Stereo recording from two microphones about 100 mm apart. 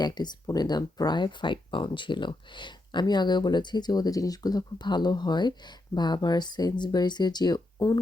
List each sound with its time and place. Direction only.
0.0 s speech: 45° left (ahead or behind)